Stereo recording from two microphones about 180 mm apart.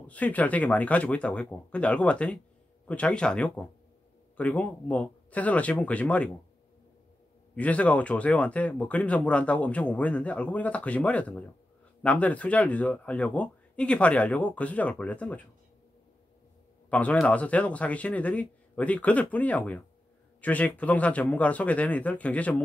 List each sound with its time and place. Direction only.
0.0 s speech: 10° left (ahead or behind)
7.5 s speech: 5° left (ahead or behind)
16.9 s speech: 10° left (ahead or behind)